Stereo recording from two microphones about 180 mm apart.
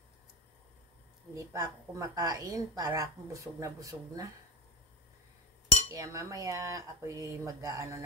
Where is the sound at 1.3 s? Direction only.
20° right (ahead or behind).